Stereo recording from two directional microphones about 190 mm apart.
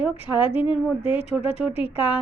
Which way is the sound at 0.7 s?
30° left (ahead or behind).